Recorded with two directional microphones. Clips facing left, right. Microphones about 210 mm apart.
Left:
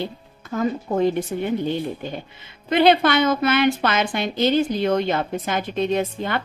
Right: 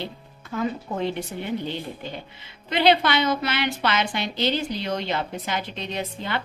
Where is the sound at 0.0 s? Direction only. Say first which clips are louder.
Left 5 dB; 45° left (ahead or behind).